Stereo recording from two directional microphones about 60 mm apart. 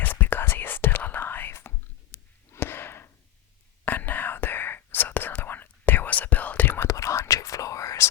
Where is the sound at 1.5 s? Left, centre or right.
Left.